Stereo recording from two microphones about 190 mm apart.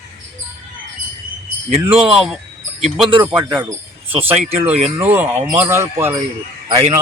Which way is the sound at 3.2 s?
10° right (ahead or behind).